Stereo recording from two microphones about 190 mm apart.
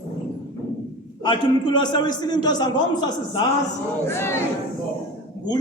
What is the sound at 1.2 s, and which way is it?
A man's voice, 25° left (ahead or behind).